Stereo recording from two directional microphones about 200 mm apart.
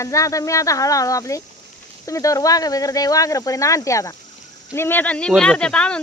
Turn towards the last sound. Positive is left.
turn(degrees=5)  # may be behind; listen again after turning